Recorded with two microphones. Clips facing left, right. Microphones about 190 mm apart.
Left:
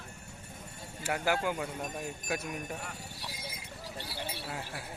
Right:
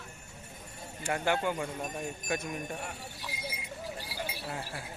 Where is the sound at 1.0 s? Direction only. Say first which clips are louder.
Right 1 dB; 5° left (ahead or behind).